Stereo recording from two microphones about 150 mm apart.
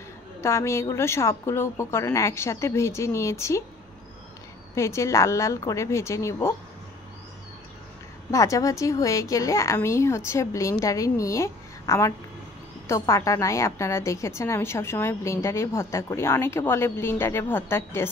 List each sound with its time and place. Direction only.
0.4 s a woman's voice: 20° left (ahead or behind)
4.7 s a woman's voice: 20° left (ahead or behind)
8.3 s a woman's voice: 20° left (ahead or behind)